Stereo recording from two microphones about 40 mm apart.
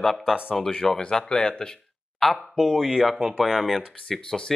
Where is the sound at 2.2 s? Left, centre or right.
Centre.